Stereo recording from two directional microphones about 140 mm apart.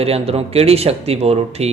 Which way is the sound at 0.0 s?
45° right (ahead or behind).